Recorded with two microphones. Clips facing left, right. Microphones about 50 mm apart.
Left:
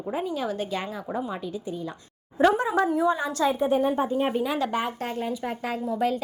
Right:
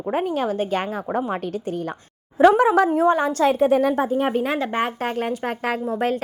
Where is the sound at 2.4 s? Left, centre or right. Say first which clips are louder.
Right 7 dB; right.